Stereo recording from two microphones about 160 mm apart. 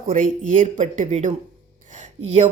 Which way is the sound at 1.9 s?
45° right (ahead or behind).